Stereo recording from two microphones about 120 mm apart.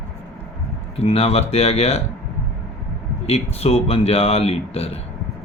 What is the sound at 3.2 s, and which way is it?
Speech, 55° left (ahead or behind).